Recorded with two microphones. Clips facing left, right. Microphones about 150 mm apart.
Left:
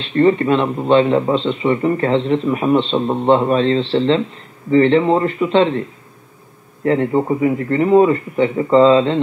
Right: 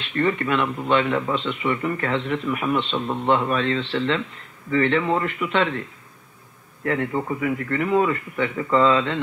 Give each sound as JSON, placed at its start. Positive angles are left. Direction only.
{"t": 0.0, "sound": "a man's voice", "side_deg": 30}